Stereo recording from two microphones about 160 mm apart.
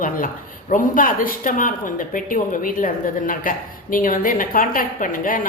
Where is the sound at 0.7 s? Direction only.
60° left (ahead or behind).